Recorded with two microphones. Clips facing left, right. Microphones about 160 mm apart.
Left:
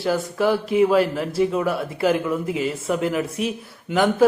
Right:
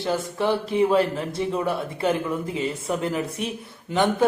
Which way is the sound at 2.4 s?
30° right (ahead or behind).